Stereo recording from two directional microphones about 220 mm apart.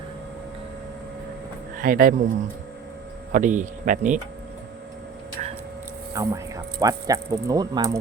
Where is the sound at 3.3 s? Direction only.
35° right (ahead or behind).